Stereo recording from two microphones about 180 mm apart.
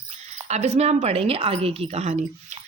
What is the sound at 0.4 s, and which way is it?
A woman's voice, 40° right (ahead or behind).